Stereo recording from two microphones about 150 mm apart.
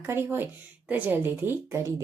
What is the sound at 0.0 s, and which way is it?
Speech, 15° right (ahead or behind).